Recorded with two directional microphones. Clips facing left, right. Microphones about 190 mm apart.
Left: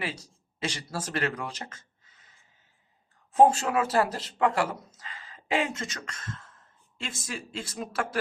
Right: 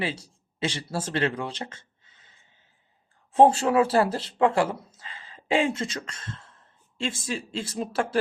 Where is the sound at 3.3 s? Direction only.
30° right (ahead or behind).